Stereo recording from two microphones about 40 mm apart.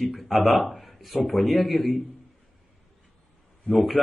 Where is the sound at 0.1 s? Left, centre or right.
Centre.